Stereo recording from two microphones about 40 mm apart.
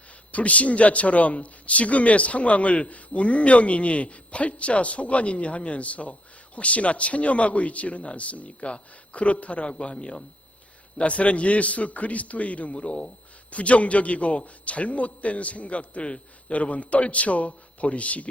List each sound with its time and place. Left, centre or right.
0.3 s a man's voice: left